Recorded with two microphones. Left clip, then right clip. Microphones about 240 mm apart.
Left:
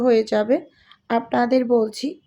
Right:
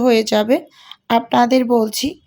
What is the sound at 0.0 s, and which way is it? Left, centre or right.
A woman's voice, right.